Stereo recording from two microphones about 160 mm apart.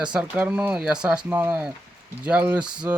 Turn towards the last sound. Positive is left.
turn(degrees=-15)  # may be behind; listen again after turning